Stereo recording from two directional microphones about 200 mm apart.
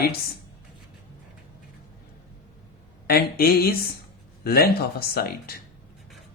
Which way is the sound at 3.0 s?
50° left (ahead or behind).